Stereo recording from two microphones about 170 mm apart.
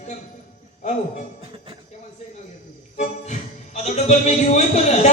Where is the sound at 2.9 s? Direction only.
45° left (ahead or behind).